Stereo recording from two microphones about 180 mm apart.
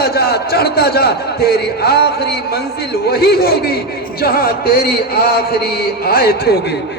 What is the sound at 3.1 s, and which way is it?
A man's voice, 60° left (ahead or behind).